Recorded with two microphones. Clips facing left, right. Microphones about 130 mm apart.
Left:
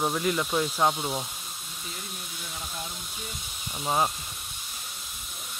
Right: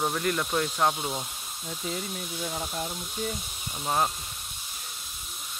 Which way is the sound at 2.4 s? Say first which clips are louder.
Right 6 dB; 45° right (ahead or behind).